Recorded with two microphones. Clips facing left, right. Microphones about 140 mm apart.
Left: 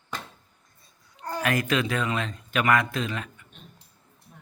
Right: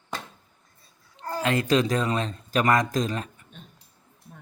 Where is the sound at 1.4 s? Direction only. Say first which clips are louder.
Right 3 dB; 25° right (ahead or behind).